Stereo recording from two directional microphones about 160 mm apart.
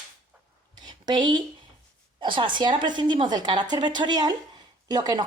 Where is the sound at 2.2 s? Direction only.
30° right (ahead or behind).